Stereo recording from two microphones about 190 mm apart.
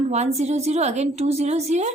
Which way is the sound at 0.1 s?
35° right (ahead or behind).